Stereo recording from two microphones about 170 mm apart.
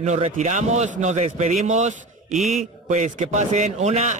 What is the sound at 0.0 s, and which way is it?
A man's voice, 40° right (ahead or behind).